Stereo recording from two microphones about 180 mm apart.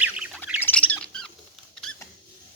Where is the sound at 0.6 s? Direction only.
5° left (ahead or behind).